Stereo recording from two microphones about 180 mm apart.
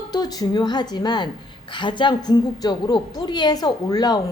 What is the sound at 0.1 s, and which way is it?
A woman's voice, 20° left (ahead or behind).